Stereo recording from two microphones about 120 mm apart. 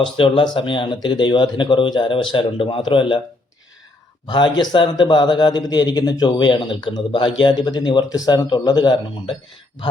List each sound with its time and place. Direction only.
0.0 s speech: 45° left (ahead or behind)
4.3 s speech: 40° left (ahead or behind)